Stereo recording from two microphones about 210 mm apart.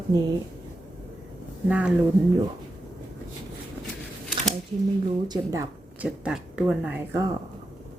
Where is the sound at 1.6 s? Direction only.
5° right (ahead or behind).